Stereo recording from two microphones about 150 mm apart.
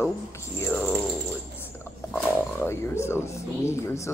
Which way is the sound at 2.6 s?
15° left (ahead or behind).